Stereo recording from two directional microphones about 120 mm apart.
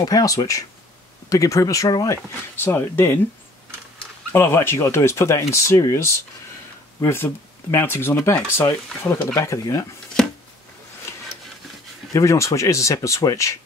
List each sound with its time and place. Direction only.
0.0 s speech: 30° left (ahead or behind)
2.6 s speech: 20° left (ahead or behind)
4.3 s speech: 20° left (ahead or behind)
10.2 s a sound: 5° left (ahead or behind)
12.1 s speech: 25° left (ahead or behind)